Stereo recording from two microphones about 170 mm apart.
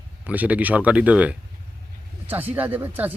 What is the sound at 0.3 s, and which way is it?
Speech, 10° right (ahead or behind).